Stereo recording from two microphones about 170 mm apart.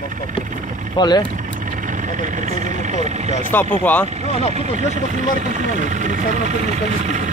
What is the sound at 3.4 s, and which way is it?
Speech, 10° left (ahead or behind).